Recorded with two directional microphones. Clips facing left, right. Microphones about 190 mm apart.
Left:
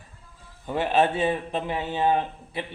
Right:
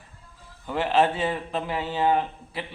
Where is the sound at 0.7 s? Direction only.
20° left (ahead or behind).